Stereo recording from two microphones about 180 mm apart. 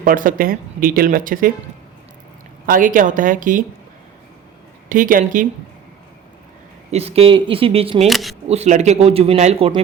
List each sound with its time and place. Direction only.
0.0 s speech: 50° right (ahead or behind)
2.6 s speech: 50° right (ahead or behind)
4.9 s speech: 50° right (ahead or behind)
6.9 s speech: 35° right (ahead or behind)
8.0 s speech: centre (ahead or behind)
8.4 s speech: 40° right (ahead or behind)